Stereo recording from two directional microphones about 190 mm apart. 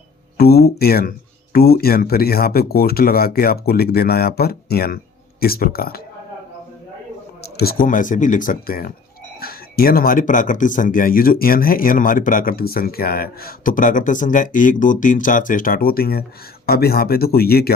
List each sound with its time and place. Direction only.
0.3 s speech: 55° left (ahead or behind)
7.5 s speech: 55° left (ahead or behind)